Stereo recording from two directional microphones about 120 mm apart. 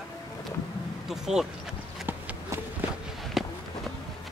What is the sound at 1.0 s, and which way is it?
Speech, 5° right (ahead or behind).